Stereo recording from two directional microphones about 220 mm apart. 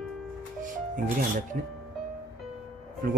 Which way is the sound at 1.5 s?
40° right (ahead or behind).